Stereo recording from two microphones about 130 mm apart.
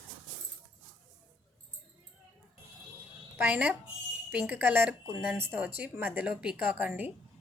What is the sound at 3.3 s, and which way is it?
A woman's voice, 10° right (ahead or behind).